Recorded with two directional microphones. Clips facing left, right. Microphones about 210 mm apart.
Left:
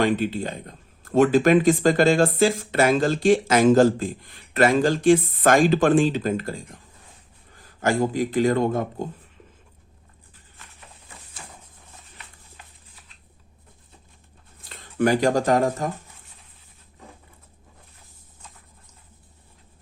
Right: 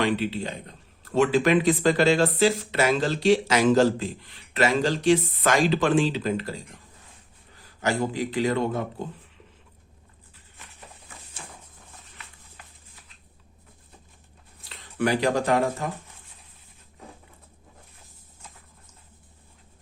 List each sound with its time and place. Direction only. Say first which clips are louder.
0.0 s speech: left 3 dB; 50° left (ahead or behind)
14.7 s speech: left 4 dB; 45° left (ahead or behind)